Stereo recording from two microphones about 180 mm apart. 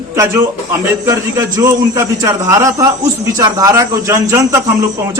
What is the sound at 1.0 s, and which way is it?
A man's voice, 15° right (ahead or behind).